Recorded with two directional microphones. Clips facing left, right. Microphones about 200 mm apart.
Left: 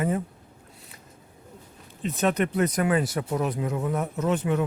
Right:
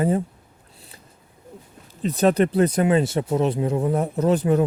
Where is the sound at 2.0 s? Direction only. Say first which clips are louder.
Right 6 dB; 35° right (ahead or behind).